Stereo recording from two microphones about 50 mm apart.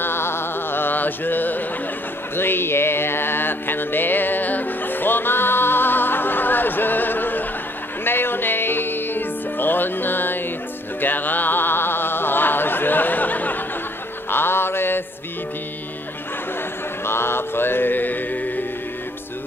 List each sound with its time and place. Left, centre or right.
0.0 s music: left
11.0 s a sound: left
14.3 s mantra: left
17.0 s music: left